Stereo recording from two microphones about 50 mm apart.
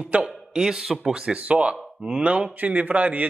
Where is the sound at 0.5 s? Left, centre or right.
Centre; by 3.2 s right.